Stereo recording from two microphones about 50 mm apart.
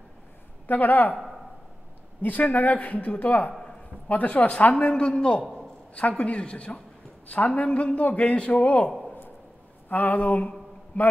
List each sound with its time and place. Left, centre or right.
0.7 s speech: left
2.2 s speech: left
4.7 s a man's voice: centre
5.4 s a sound: centre
5.9 s a man's voice: left
9.8 s speech: left